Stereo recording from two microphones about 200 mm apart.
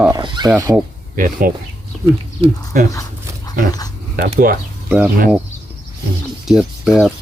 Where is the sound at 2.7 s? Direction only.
45° right (ahead or behind).